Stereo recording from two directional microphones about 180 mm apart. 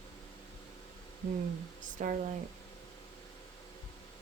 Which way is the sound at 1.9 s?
45° right (ahead or behind).